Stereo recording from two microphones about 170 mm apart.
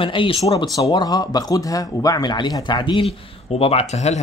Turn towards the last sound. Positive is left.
turn(degrees=40)  # may be behind; listen again after turning